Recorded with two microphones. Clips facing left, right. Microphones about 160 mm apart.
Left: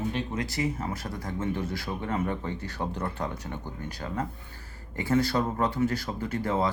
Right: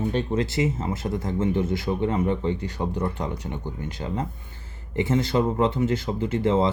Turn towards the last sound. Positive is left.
turn(degrees=-25)  # may be behind; listen again after turning